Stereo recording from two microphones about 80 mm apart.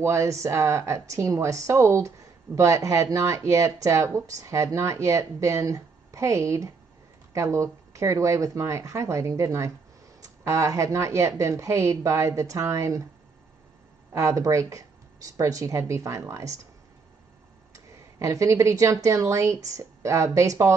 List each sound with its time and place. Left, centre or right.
0.0 s speech: right
14.1 s speech: right
17.7 s speech: right